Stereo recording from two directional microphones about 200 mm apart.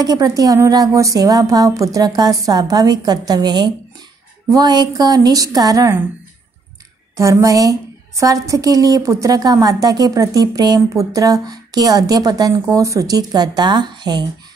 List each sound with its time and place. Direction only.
0.0 s a woman's voice: 20° right (ahead or behind)
7.2 s a woman's voice: 15° right (ahead or behind)